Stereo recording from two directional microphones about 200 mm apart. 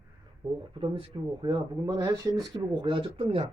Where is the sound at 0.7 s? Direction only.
25° right (ahead or behind).